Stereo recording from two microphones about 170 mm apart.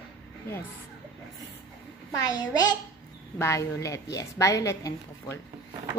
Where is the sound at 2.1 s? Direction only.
20° left (ahead or behind).